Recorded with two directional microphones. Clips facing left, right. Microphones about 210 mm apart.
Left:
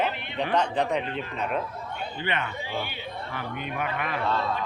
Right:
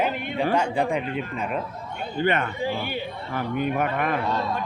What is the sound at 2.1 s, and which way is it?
A man's voice, 45° right (ahead or behind).